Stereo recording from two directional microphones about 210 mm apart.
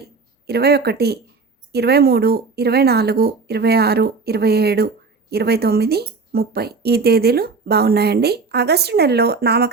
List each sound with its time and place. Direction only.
0.4 s a woman's voice: 50° right (ahead or behind)